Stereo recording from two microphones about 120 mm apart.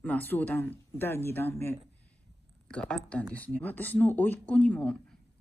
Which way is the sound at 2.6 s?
10° left (ahead or behind).